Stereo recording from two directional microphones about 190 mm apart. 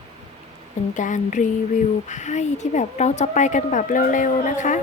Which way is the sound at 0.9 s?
40° left (ahead or behind).